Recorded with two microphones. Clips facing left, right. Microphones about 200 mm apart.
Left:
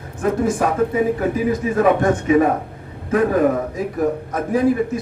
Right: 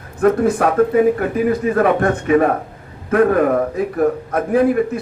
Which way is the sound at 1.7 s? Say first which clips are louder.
Even; 60° right (ahead or behind).